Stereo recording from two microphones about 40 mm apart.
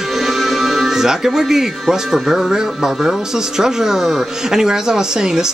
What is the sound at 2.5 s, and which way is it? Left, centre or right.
Speech, centre.